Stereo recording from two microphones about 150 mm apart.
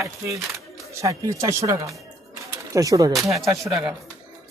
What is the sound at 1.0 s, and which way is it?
Speech, 20° right (ahead or behind).